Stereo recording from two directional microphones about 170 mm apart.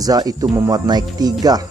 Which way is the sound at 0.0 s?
20° right (ahead or behind).